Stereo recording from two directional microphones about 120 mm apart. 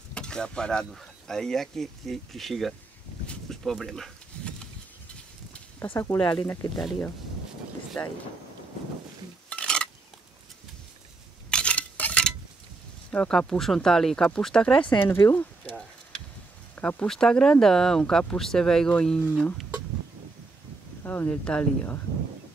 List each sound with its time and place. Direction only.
0.1 s speech: 5° left (ahead or behind)
3.3 s a sound: 5° left (ahead or behind)
5.8 s speech: 20° left (ahead or behind)
8.0 s speech: 15° left (ahead or behind)
9.5 s stir: 10° left (ahead or behind)
11.5 s cutlery: 10° left (ahead or behind)
13.1 s speech: 10° left (ahead or behind)
15.0 s speech: 20° left (ahead or behind)
16.7 s speech: 10° left (ahead or behind)
21.0 s speech: 15° left (ahead or behind)